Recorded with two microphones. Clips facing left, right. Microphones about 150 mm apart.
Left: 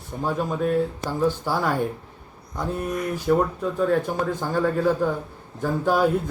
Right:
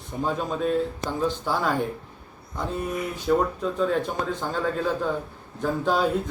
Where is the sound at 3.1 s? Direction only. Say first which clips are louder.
Left 1 dB; 10° left (ahead or behind).